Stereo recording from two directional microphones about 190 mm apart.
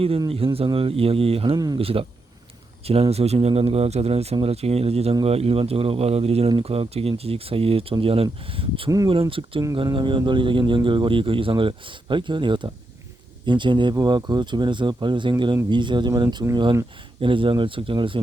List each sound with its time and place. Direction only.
0.2 s speech: 30° right (ahead or behind)